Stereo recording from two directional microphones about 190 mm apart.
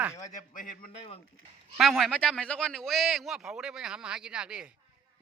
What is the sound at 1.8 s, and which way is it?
A man's voice, centre (ahead or behind).